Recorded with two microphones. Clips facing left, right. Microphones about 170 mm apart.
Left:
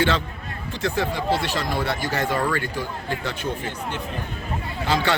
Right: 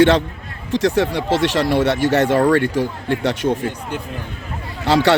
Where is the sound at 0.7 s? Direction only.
75° right (ahead or behind).